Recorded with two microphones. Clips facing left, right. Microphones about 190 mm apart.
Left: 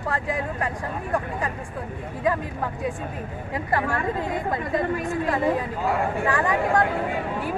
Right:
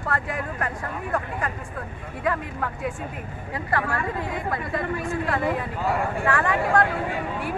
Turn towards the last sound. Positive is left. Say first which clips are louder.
# even
turn(degrees=20)  # may be behind; listen again after turning